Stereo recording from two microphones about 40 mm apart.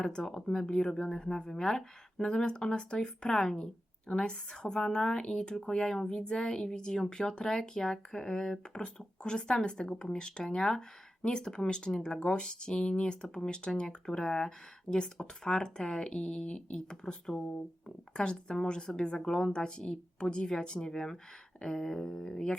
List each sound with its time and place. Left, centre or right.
0.0 s speech: centre